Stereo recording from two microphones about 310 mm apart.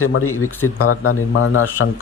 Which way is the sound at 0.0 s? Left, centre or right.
Left.